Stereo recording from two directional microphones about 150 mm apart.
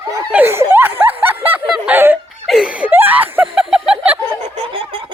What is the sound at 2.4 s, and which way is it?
Laughter, 5° right (ahead or behind).